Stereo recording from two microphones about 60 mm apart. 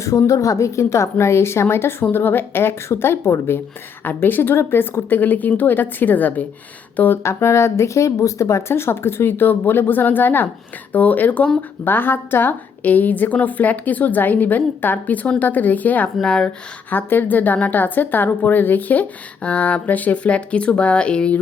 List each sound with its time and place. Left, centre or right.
0.3 s speech: left
4.0 s speech: left
7.2 s a woman's voice: left
16.2 s speech: centre
16.9 s a woman's voice: left